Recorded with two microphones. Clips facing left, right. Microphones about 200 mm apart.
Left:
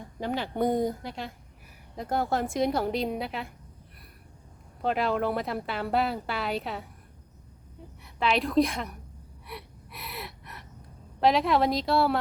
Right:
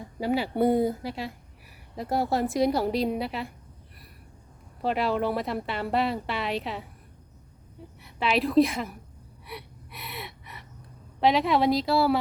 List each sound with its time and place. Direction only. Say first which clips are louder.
0.2 s a woman's voice: right 4 dB; 5° right (ahead or behind)
4.8 s a woman's voice: right 1 dB; centre (ahead or behind)
8.0 s a woman's voice: right 1 dB; centre (ahead or behind)
9.5 s gasp: right 1 dB; centre (ahead or behind)
11.2 s a woman's voice: right 1 dB; centre (ahead or behind)